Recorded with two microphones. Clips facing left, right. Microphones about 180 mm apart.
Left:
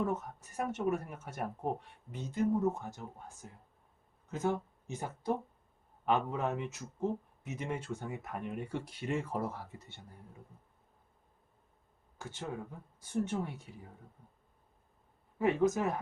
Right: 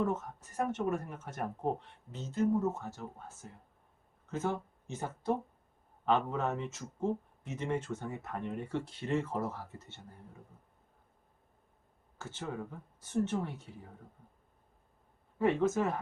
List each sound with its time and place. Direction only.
0.0 s speech: 10° left (ahead or behind)
12.2 s speech: 10° left (ahead or behind)
15.4 s speech: 10° left (ahead or behind)